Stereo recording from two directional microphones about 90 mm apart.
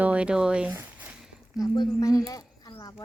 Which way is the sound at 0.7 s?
20° right (ahead or behind).